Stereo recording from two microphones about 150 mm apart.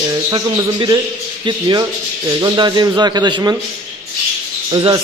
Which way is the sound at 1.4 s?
30° right (ahead or behind).